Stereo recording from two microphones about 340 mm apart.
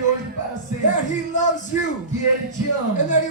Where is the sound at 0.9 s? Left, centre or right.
Left.